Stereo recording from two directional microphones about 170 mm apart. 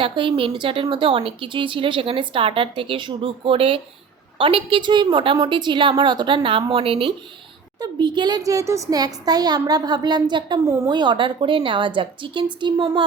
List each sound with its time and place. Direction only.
0.0 s a woman's voice: 30° right (ahead or behind)